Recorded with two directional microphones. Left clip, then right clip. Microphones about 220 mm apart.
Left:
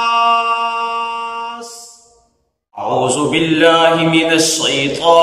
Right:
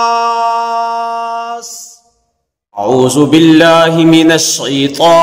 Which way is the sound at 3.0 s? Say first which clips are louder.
Right 7 dB; 50° right (ahead or behind).